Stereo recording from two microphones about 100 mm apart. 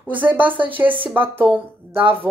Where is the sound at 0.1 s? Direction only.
15° right (ahead or behind).